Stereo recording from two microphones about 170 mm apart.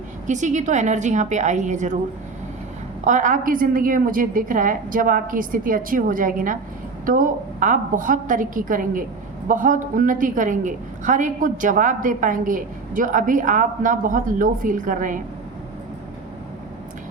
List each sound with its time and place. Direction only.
0.3 s a woman's voice: 45° right (ahead or behind)
3.0 s a woman's voice: 45° right (ahead or behind)